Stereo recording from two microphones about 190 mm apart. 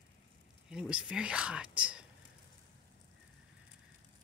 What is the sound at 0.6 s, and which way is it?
Speech, 5° right (ahead or behind).